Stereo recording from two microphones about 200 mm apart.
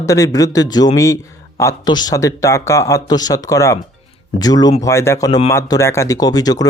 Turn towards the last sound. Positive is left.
turn(degrees=20)  # may be behind; listen again after turning